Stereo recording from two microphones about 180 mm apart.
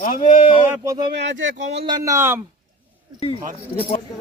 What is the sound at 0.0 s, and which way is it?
Speech, 45° left (ahead or behind).